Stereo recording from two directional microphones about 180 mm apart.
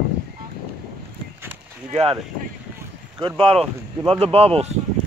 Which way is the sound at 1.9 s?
35° right (ahead or behind).